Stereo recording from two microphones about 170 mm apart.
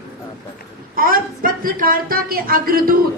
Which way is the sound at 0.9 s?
60° right (ahead or behind).